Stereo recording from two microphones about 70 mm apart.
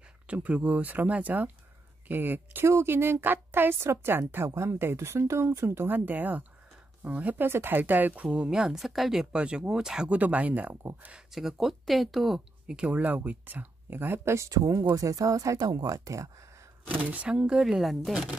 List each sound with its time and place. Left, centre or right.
0.3 s speech: right
2.6 s a woman's voice: right
5.9 s speech: right
10.1 s speech: right
11.3 s speech: centre; by 14.5 s right
14.5 s speech: right
16.9 s speech: right; by 18.1 s centre